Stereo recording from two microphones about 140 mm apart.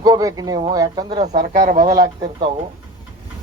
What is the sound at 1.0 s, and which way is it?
Speech, 55° right (ahead or behind).